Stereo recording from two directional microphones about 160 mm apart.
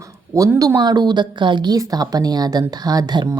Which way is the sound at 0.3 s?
20° right (ahead or behind).